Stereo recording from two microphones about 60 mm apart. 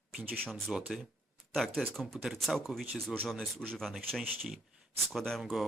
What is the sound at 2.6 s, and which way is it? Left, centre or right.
Speech, centre.